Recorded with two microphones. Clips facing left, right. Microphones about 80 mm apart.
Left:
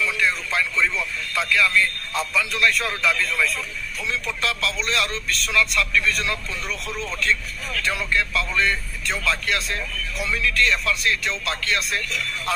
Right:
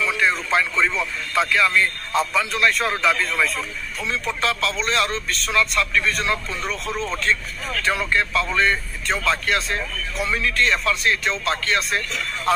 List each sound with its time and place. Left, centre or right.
0.0 s a man's voice: right